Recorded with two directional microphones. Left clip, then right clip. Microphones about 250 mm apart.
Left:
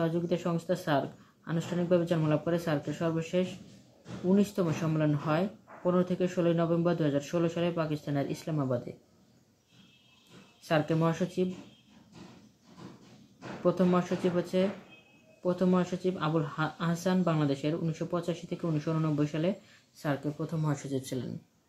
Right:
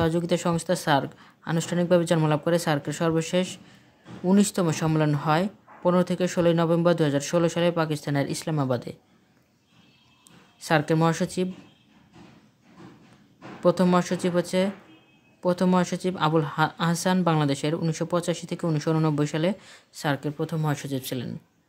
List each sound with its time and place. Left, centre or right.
0.0 s a woman's voice: right
10.6 s a woman's voice: right
13.7 s a woman's voice: right